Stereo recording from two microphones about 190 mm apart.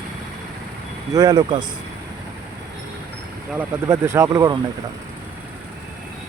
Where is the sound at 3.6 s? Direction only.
15° right (ahead or behind).